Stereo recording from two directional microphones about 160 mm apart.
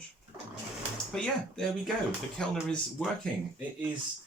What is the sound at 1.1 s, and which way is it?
Speech, 5° left (ahead or behind).